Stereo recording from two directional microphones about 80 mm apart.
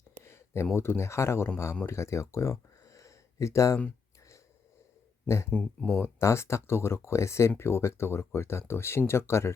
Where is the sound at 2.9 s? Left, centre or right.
Left.